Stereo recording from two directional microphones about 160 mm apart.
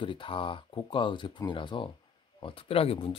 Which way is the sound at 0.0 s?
30° left (ahead or behind).